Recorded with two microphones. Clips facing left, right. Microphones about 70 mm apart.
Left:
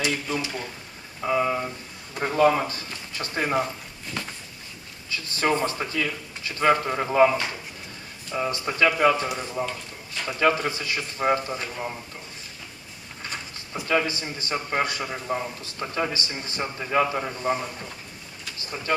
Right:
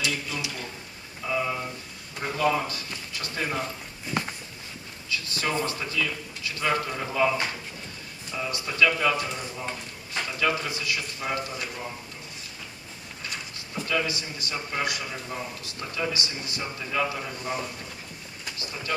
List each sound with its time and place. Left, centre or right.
0.1 s a man's voice: left
1.2 s a sound: left
2.2 s speech: left
5.1 s a man's voice: left
13.8 s a man's voice: left
18.5 s vehicle: left